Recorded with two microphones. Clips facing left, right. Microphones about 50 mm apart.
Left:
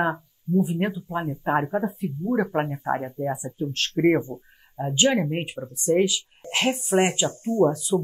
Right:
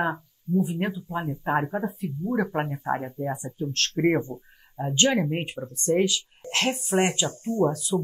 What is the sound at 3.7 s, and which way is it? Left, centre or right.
Speech, centre.